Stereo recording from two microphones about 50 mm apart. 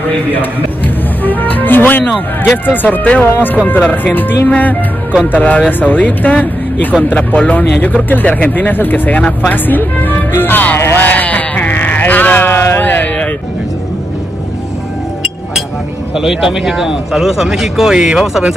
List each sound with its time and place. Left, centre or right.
0.3 s music: left
2.4 s speech: left
9.5 s music: left
11.0 s sheep: left
16.2 s speech: centre